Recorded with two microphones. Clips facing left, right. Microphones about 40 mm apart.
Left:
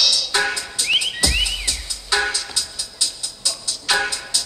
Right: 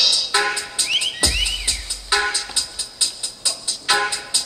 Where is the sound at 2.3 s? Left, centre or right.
Right.